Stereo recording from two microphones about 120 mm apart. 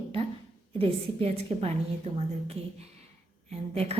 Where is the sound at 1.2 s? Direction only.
60° right (ahead or behind).